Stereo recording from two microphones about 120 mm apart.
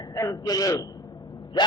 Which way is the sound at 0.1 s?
25° left (ahead or behind).